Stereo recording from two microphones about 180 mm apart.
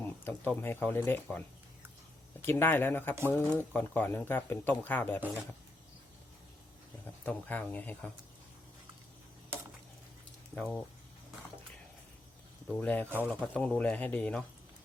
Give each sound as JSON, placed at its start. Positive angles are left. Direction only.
{"t": 0.3, "sound": "speech", "side_deg": 10}
{"t": 7.3, "sound": "speech", "side_deg": 10}
{"t": 10.5, "sound": "speech", "side_deg": 5}
{"t": 12.6, "sound": "speech", "side_deg": 10}